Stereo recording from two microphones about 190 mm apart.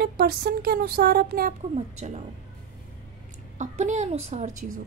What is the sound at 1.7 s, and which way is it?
Speech, 35° right (ahead or behind).